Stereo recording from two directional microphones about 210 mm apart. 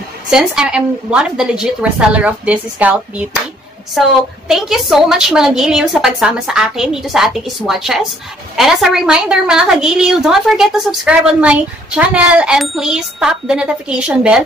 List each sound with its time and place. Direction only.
0.3 s a woman's voice: 5° right (ahead or behind)